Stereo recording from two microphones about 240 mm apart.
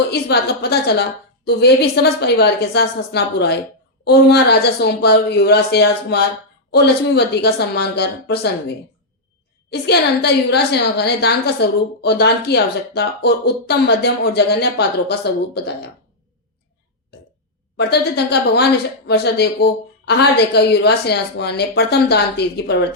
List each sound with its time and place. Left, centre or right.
0.1 s a woman's voice: left
17.7 s a woman's voice: left